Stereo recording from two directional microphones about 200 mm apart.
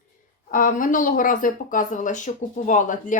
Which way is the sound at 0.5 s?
45° left (ahead or behind).